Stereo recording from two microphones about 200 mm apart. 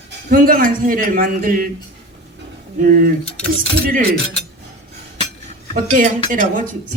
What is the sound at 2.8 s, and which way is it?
A woman's voice, 45° right (ahead or behind).